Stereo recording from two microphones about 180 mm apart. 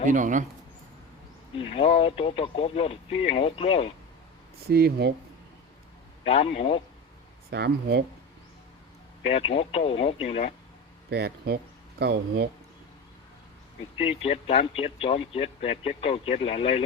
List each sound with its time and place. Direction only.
0.1 s speech: 45° right (ahead or behind)
1.5 s speech: 30° left (ahead or behind)
4.6 s speech: 60° right (ahead or behind)
6.2 s speech: 35° left (ahead or behind)
7.5 s speech: 65° right (ahead or behind)
9.3 s speech: 35° left (ahead or behind)
11.1 s speech: 65° right (ahead or behind)
14.0 s speech: 35° left (ahead or behind)